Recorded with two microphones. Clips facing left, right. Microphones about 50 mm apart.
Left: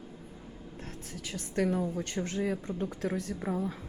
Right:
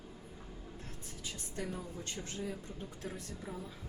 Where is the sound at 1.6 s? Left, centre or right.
Left.